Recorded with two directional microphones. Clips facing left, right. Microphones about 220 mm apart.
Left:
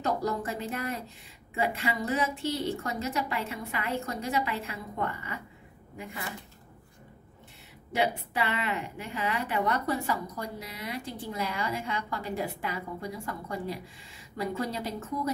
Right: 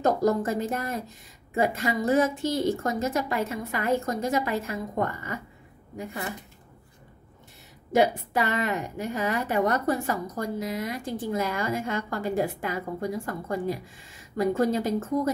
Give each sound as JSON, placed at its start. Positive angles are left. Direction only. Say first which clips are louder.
{"t": 0.0, "sound": "a woman's voice", "louder": "right 7 dB", "side_deg": -45}
{"t": 7.9, "sound": "a woman's voice", "louder": "right 7 dB", "side_deg": -45}